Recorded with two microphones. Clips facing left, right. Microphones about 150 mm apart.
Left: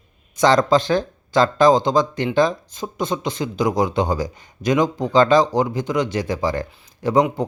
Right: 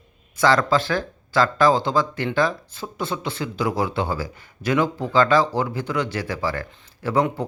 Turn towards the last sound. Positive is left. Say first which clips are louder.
# left 4 dB
turn(degrees=15)  # may be behind; listen again after turning